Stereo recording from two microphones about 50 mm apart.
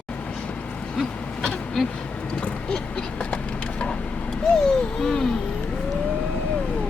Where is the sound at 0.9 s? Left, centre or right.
Centre.